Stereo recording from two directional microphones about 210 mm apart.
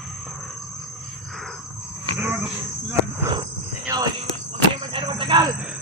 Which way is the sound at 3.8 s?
20° right (ahead or behind).